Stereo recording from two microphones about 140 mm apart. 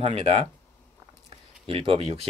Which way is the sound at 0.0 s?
45° right (ahead or behind).